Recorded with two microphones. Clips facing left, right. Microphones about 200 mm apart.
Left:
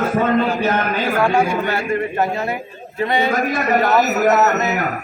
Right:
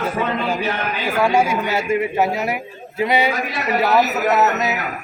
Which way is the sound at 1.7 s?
10° right (ahead or behind).